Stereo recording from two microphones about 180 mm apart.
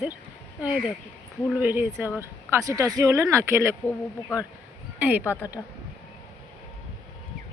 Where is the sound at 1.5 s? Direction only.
10° right (ahead or behind).